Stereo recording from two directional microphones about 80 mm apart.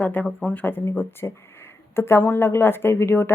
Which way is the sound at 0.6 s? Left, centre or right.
Left.